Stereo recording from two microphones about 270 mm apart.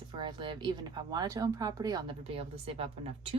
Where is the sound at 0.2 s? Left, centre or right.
Centre.